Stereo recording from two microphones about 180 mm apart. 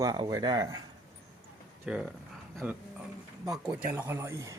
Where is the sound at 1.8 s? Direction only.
5° right (ahead or behind).